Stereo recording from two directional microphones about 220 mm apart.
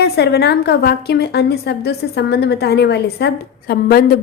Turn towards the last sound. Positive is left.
turn(degrees=45)  # may be behind; listen again after turning